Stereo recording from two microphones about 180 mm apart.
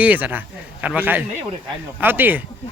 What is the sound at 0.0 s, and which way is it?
A man's voice, 10° right (ahead or behind).